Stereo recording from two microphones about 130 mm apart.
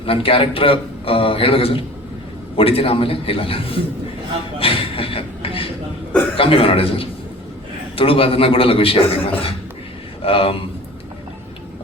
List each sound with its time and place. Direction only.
0.0 s a man's voice: 45° left (ahead or behind)
4.6 s a sound: 45° left (ahead or behind)
6.3 s a man's voice: 45° left (ahead or behind)